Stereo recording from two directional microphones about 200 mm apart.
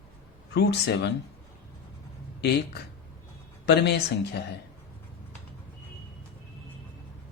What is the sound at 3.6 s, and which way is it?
Speech, 55° left (ahead or behind).